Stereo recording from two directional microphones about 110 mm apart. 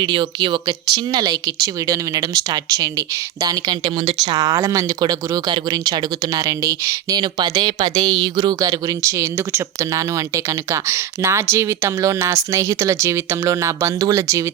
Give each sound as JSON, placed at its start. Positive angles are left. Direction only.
{"t": 0.0, "sound": "speech", "side_deg": -45}